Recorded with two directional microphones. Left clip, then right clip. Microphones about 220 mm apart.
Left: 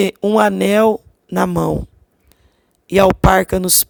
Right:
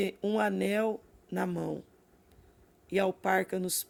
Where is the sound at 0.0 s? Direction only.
45° left (ahead or behind).